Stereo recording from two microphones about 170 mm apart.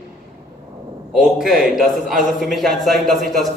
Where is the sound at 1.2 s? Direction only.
5° right (ahead or behind).